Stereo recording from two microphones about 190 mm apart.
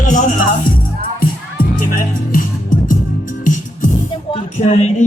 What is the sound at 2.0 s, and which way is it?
Music, 45° left (ahead or behind).